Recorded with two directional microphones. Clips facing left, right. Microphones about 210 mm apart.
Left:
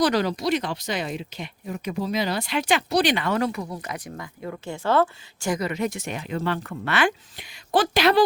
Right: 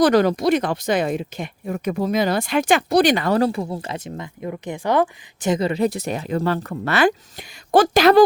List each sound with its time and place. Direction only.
0.0 s speech: 50° right (ahead or behind)